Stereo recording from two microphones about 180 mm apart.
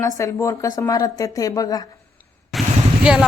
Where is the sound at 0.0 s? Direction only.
15° left (ahead or behind).